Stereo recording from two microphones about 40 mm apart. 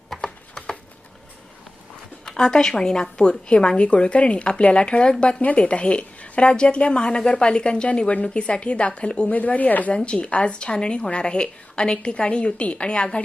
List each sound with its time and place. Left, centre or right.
0.2 s a sound: centre
2.2 s a woman's voice: centre
5.4 s speech: left
5.6 s a woman's voice: left
9.3 s speech: left
9.9 s a woman's voice: left